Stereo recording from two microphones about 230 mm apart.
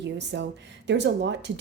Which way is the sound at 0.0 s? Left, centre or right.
Right.